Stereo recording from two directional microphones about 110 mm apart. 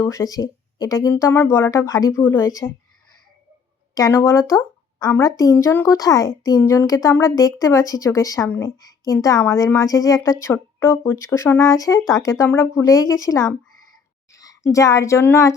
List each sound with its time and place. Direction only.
0.0 s speech: 30° left (ahead or behind)
1.1 s speech: 20° left (ahead or behind)
2.2 s speech: 20° left (ahead or behind)
4.1 s a woman's voice: 25° left (ahead or behind)